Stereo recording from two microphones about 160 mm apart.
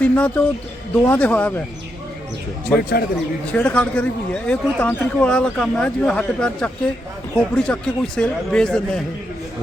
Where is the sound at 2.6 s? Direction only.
65° left (ahead or behind).